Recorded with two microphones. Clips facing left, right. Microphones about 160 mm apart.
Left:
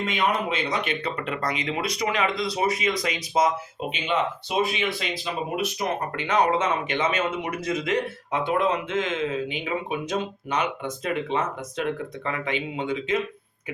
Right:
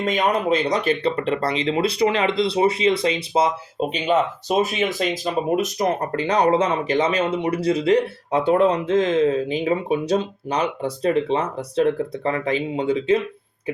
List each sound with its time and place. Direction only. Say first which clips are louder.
0.0 s speech: right 5 dB; 40° right (ahead or behind)